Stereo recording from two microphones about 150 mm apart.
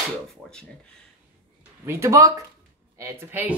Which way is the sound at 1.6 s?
20° right (ahead or behind).